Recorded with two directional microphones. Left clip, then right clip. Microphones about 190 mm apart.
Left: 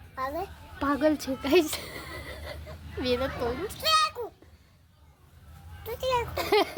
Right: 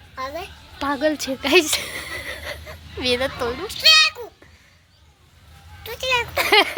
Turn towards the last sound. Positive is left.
turn(degrees=-10)  # may be behind; listen again after turning